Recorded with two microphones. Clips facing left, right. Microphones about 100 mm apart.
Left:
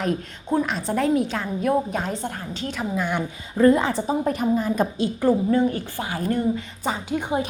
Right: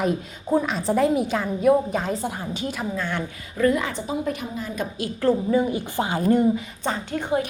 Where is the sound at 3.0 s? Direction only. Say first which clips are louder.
Left 5 dB; 15° left (ahead or behind).